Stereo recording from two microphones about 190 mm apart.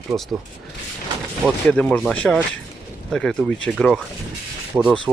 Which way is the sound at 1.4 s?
5° left (ahead or behind).